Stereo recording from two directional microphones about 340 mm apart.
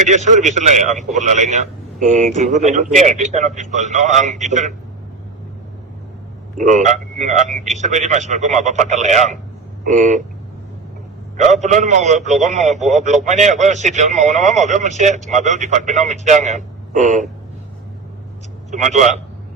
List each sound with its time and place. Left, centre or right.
0.1 s a man's voice: right
6.6 s a man's voice: right
11.3 s a man's voice: right
18.7 s a man's voice: right